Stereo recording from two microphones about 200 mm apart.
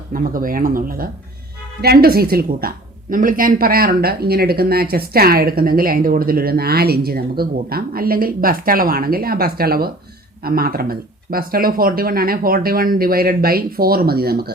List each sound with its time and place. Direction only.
0.1 s speech: 45° right (ahead or behind)